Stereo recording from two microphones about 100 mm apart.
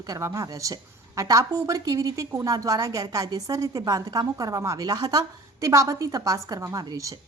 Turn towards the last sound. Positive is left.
turn(degrees=-35)  # may be behind; listen again after turning